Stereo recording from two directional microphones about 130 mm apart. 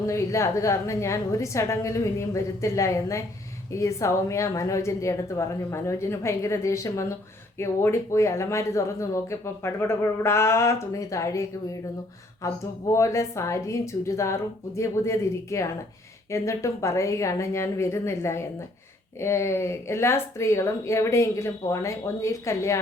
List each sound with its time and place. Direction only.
0.0 s speech: 25° left (ahead or behind)